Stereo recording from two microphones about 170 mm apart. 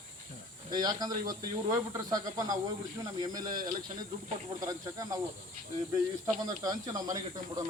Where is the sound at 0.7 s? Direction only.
25° right (ahead or behind).